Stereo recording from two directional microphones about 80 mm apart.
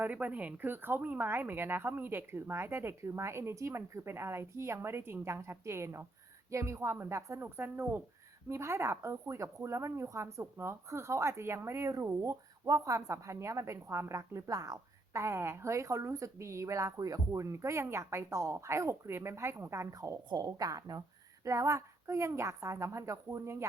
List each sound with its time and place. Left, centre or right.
0.0 s speech: right
19.9 s a woman's voice: right
21.4 s speech: right